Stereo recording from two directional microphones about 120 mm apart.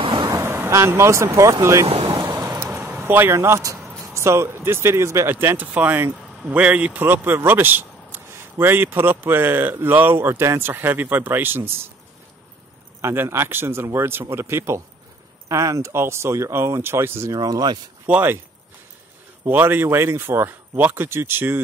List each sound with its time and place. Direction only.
0.0 s vehicle: 45° right (ahead or behind)
0.3 s speech: 20° right (ahead or behind)
2.0 s vehicle: 35° right (ahead or behind)
3.1 s speech: 20° right (ahead or behind)
13.0 s speech: 20° right (ahead or behind)
17.4 s speech: 35° right (ahead or behind)
18.0 s speech: 15° right (ahead or behind)
19.4 s speech: 15° right (ahead or behind)